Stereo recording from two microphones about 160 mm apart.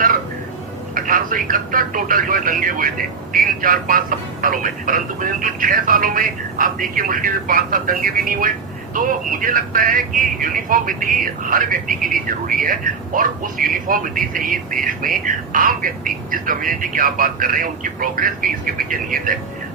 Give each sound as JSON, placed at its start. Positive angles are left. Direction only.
{"t": 0.9, "sound": "a man's voice", "side_deg": -60}